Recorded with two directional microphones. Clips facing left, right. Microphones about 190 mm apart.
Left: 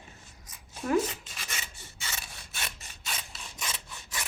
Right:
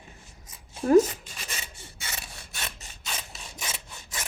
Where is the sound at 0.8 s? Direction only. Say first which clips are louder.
Right 9 dB; 35° right (ahead or behind).